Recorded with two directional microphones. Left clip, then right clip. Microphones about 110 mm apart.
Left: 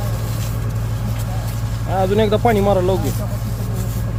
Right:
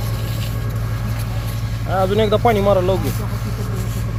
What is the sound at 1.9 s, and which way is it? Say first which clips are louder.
Speech: even; 45° left (ahead or behind).